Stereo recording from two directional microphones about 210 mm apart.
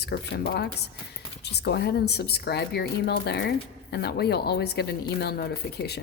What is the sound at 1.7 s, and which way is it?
Speech, 50° left (ahead or behind).